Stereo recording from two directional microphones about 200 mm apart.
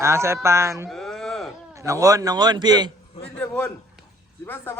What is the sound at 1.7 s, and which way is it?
A man's voice, 15° right (ahead or behind).